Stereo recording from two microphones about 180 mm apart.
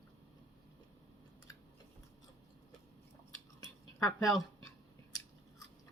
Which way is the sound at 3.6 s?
20° left (ahead or behind).